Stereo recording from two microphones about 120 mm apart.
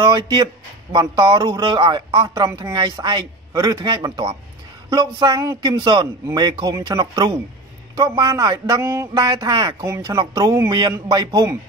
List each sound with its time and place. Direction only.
0.1 s a man's voice: 40° right (ahead or behind)